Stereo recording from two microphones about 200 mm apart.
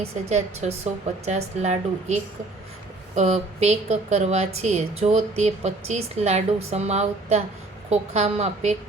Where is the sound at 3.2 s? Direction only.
35° right (ahead or behind).